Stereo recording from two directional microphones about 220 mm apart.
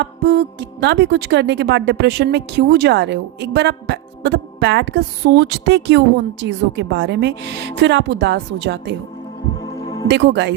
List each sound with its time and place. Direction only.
0.0 s speech: 50° right (ahead or behind)
9.8 s music: 20° left (ahead or behind)
10.1 s speech: 50° right (ahead or behind)